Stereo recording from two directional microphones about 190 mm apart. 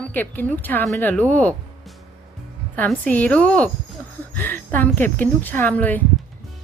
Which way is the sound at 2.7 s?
10° left (ahead or behind).